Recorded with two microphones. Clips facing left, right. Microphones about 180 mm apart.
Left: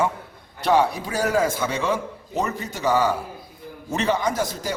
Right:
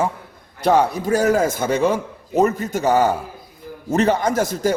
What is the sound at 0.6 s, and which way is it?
Speech, 45° right (ahead or behind).